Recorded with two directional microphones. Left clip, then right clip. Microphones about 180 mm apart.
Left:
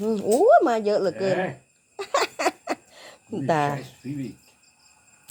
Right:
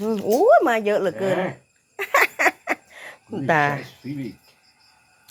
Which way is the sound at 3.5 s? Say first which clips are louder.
Right 4 dB; 10° left (ahead or behind).